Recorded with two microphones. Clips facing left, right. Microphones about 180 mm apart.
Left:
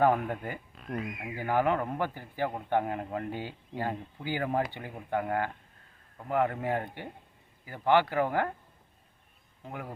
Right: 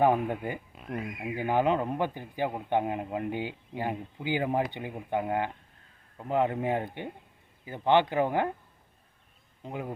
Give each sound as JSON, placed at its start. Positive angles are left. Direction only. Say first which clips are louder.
{"t": 0.0, "sound": "speech", "louder": "right 1 dB", "side_deg": -20}
{"t": 9.6, "sound": "speech", "louder": "right 4 dB", "side_deg": -20}